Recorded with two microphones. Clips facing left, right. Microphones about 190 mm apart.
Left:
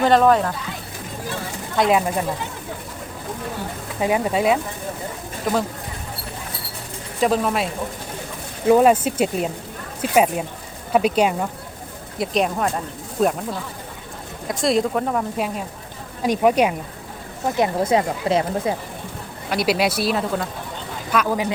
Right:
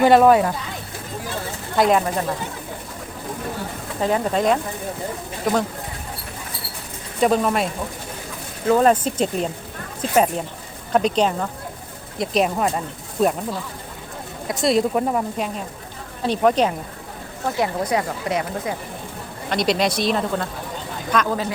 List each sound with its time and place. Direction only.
0.0 s speech: 10° right (ahead or behind)
1.7 s speech: centre (ahead or behind)
4.0 s speech: 10° left (ahead or behind)
7.2 s speech: centre (ahead or behind)
8.6 s speech: 10° left (ahead or behind)
12.2 s speech: centre (ahead or behind)
14.6 s speech: centre (ahead or behind)
17.4 s speech: 20° left (ahead or behind)
19.5 s speech: 5° left (ahead or behind)